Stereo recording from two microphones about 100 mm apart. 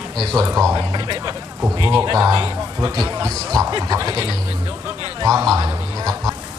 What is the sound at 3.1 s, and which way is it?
A man's voice, 35° right (ahead or behind).